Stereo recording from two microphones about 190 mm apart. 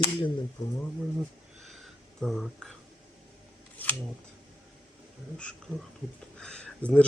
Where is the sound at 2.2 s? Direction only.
Centre (ahead or behind).